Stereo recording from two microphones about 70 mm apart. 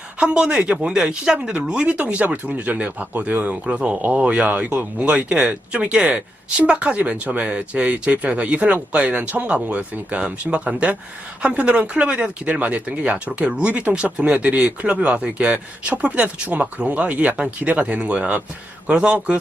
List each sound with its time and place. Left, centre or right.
0.2 s speech: centre